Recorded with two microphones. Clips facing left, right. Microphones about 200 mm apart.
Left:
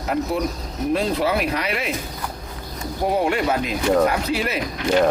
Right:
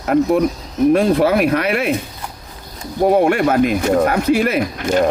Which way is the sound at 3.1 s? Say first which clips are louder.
Right 6 dB; 55° right (ahead or behind).